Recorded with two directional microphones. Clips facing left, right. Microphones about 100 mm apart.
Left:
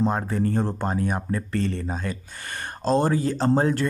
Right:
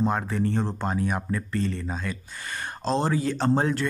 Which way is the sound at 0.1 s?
40° left (ahead or behind).